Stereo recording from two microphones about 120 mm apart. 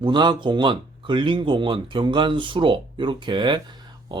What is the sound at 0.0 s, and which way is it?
Speech, 40° right (ahead or behind).